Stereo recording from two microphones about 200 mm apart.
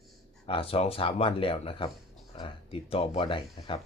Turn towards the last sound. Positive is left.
turn(degrees=25)  # may be behind; listen again after turning